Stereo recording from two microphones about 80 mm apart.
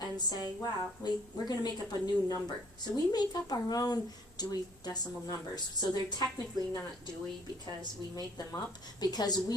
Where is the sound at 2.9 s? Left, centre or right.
Left.